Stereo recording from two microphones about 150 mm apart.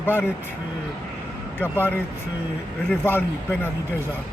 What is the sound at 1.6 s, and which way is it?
Speech, 10° left (ahead or behind).